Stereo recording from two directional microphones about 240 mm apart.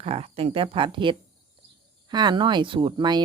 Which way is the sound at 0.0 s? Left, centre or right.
Right.